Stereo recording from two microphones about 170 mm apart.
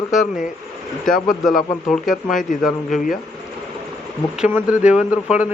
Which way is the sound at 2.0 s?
50° left (ahead or behind).